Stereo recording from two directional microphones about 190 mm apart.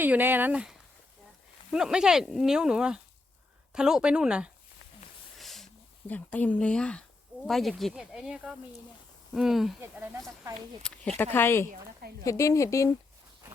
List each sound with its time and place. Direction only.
0.0 s speech: 10° right (ahead or behind)
5.4 s a sound: centre (ahead or behind)
7.4 s speech: centre (ahead or behind)
10.8 s a woman's voice: 5° left (ahead or behind)